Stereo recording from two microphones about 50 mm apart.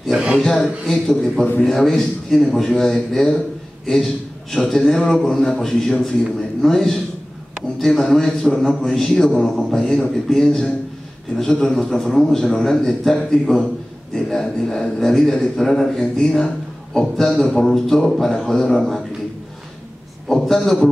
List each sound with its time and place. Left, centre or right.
0.1 s speech: centre
0.4 s a man's voice: centre
20.2 s a man's voice: centre